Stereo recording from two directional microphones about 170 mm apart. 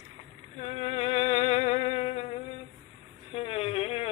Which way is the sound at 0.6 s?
35° left (ahead or behind).